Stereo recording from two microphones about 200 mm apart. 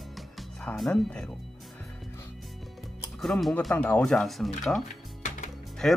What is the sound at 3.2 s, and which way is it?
Speech, centre (ahead or behind).